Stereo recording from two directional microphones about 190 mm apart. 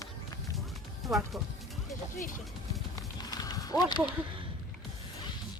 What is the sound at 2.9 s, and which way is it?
Horse, 20° left (ahead or behind).